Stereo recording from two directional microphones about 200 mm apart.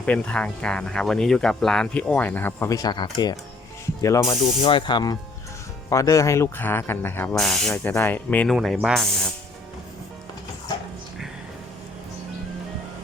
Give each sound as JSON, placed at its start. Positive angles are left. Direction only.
{"t": 0.0, "sound": "speech", "side_deg": 5}
{"t": 7.7, "sound": "speech", "side_deg": 10}